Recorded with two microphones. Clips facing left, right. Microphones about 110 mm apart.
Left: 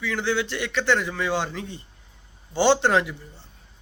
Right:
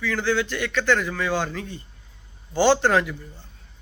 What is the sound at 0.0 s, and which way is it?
A man's voice, 20° left (ahead or behind).